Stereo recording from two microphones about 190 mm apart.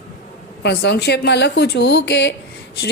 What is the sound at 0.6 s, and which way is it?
A woman's voice, 60° left (ahead or behind).